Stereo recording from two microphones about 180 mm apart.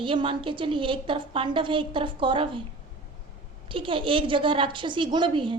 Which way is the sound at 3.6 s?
30° right (ahead or behind).